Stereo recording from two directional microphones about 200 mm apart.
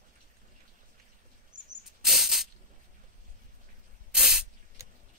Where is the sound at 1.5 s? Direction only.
40° right (ahead or behind).